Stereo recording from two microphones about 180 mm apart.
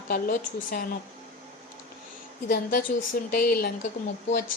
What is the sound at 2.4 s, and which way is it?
Speech, 60° left (ahead or behind).